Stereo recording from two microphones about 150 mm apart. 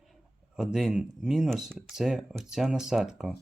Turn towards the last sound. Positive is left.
turn(degrees=-5)  # may be behind; listen again after turning